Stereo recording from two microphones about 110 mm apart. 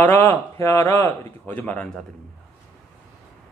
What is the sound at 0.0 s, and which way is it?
A man's voice, 20° left (ahead or behind).